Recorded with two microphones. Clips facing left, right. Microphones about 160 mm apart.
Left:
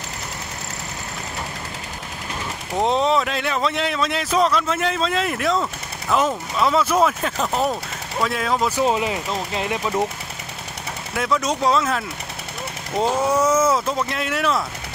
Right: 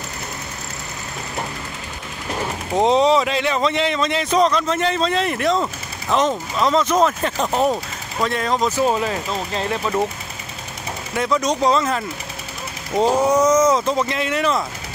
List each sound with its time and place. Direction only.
2.7 s speech: centre (ahead or behind)
11.1 s speech: centre (ahead or behind)
13.2 s speech: 5° left (ahead or behind)